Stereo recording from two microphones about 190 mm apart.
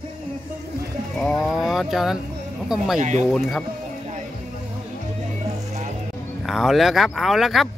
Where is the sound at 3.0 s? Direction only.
40° right (ahead or behind).